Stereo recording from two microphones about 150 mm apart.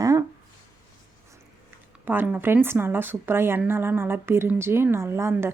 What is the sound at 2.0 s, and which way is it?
Speech, 10° right (ahead or behind).